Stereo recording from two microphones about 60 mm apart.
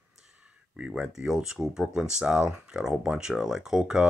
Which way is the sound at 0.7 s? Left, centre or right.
Centre.